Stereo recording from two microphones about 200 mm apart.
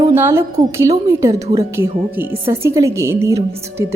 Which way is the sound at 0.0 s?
15° right (ahead or behind).